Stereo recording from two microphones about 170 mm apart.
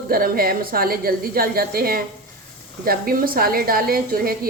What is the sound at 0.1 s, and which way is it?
A woman's voice, 60° right (ahead or behind).